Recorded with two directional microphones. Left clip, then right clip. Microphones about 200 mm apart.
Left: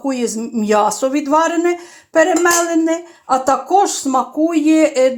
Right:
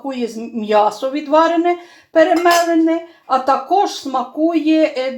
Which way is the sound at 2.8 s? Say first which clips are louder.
Right 1 dB; 45° left (ahead or behind).